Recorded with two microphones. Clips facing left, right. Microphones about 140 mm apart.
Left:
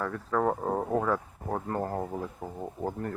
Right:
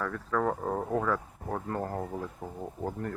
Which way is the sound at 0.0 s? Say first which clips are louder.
Left 2 dB; 20° left (ahead or behind).